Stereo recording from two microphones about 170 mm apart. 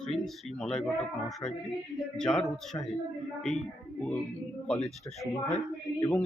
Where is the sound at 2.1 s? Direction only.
5° left (ahead or behind).